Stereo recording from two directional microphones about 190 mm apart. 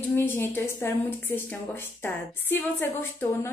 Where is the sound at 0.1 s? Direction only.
10° left (ahead or behind).